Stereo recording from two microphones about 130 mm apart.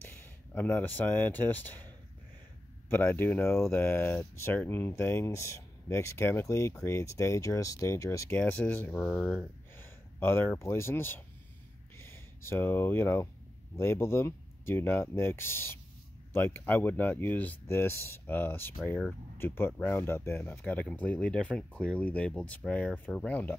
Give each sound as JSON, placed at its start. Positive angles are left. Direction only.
{"t": 0.2, "sound": "speech", "side_deg": 15}
{"t": 2.9, "sound": "speech", "side_deg": 15}
{"t": 8.3, "sound": "speech", "side_deg": 10}
{"t": 9.8, "sound": "a sound", "side_deg": 15}
{"t": 10.6, "sound": "speech", "side_deg": 20}